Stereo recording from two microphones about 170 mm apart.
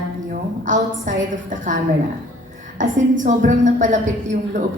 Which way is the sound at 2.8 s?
50° right (ahead or behind).